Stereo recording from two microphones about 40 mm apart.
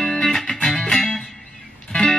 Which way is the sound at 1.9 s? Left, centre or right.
Left.